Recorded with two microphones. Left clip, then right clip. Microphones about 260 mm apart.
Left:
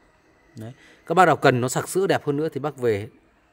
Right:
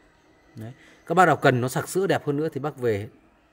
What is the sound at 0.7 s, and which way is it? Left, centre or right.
A man's voice, centre.